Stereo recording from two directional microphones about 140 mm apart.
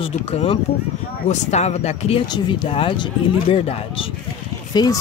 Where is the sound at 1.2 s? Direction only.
50° left (ahead or behind).